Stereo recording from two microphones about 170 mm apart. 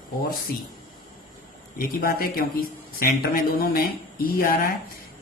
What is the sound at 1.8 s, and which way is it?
Speech, 60° left (ahead or behind).